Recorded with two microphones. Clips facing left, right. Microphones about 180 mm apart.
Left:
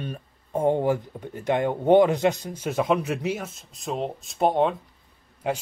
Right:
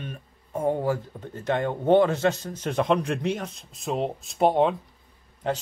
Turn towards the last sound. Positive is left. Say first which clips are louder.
# even
turn(degrees=10)  # may be behind; listen again after turning